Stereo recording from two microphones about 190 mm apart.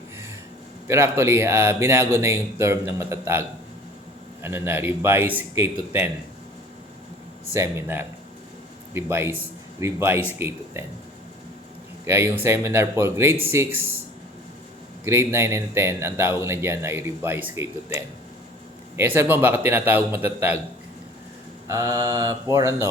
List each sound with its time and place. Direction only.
0.9 s speech: 15° right (ahead or behind)
4.4 s speech: 10° right (ahead or behind)
7.5 s speech: 15° right (ahead or behind)
12.0 s speech: 10° right (ahead or behind)
15.0 s speech: 15° right (ahead or behind)
18.9 s speech: 15° right (ahead or behind)
21.7 s speech: 20° right (ahead or behind)